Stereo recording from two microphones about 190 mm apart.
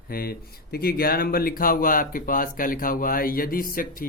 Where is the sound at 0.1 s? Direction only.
55° left (ahead or behind).